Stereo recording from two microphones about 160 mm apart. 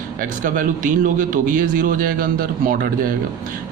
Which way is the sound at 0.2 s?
55° right (ahead or behind).